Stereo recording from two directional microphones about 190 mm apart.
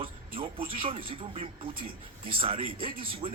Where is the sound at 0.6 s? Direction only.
50° right (ahead or behind).